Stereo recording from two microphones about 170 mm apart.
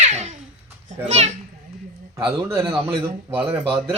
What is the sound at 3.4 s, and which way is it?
Speech, 30° right (ahead or behind).